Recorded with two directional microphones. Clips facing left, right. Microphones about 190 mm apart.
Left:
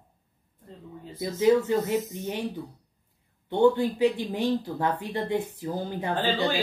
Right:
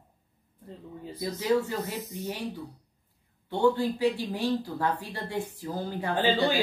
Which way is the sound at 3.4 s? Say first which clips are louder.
Left 3 dB; 20° left (ahead or behind).